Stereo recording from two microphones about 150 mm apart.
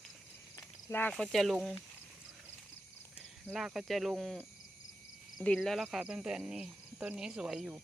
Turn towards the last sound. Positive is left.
turn(degrees=-5)  # may be behind; listen again after turning